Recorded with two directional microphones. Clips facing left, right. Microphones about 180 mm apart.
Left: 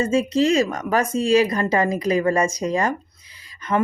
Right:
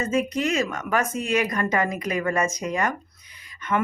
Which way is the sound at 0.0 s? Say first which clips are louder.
Left 5 dB; 30° left (ahead or behind).